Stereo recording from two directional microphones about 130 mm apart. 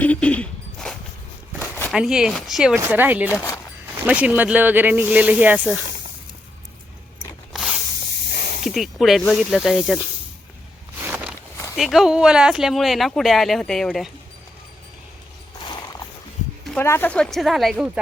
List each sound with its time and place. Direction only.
0.0 s a sound: 10° left (ahead or behind)
1.9 s speech: 5° right (ahead or behind)
2.7 s speech: 15° right (ahead or behind)
3.2 s speech: 20° left (ahead or behind)
4.0 s speech: 10° right (ahead or behind)
7.5 s spray: centre (ahead or behind)
8.6 s speech: centre (ahead or behind)
11.0 s walk: 15° right (ahead or behind)
11.8 s speech: centre (ahead or behind)
15.5 s a sound: 35° left (ahead or behind)
16.8 s speech: 20° left (ahead or behind)
17.1 s speech: 5° left (ahead or behind)